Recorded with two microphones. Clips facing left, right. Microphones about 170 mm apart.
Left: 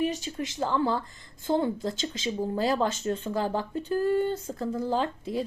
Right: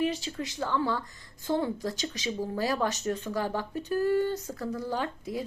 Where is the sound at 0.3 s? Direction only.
20° left (ahead or behind).